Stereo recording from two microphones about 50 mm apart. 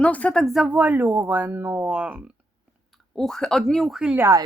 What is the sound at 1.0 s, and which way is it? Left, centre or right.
Speech, right.